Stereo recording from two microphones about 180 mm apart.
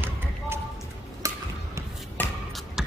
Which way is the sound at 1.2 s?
20° right (ahead or behind).